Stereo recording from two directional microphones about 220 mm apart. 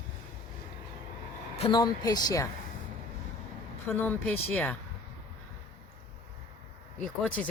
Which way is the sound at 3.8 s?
10° left (ahead or behind).